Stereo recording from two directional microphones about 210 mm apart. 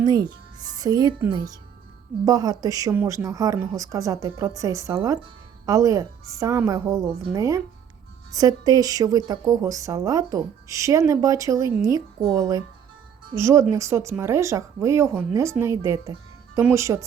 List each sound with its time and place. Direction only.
0.0 s a woman's voice: 20° right (ahead or behind)